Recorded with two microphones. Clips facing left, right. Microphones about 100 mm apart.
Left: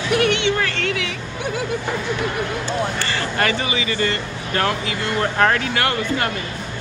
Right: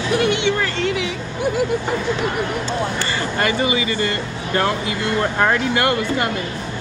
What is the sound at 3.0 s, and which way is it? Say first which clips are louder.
Speech: right 1 dB; 20° right (ahead or behind).